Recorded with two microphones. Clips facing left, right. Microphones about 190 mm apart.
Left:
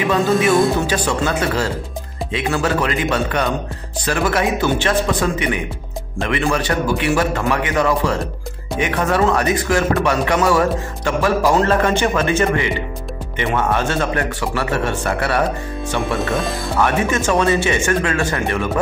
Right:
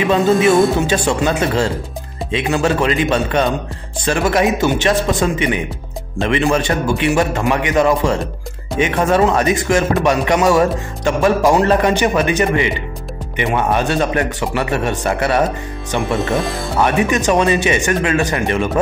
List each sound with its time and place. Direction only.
0.1 s a man's voice: 25° right (ahead or behind)